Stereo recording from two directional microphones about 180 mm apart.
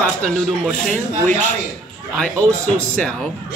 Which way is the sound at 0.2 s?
5° left (ahead or behind).